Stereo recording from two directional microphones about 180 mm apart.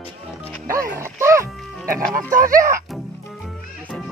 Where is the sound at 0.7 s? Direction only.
15° right (ahead or behind).